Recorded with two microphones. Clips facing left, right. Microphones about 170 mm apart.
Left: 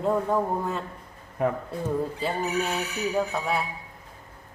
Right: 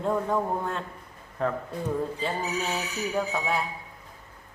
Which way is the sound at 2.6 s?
Centre (ahead or behind).